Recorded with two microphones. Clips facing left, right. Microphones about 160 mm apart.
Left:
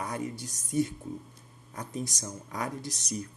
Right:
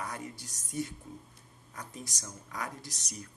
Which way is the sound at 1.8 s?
25° left (ahead or behind).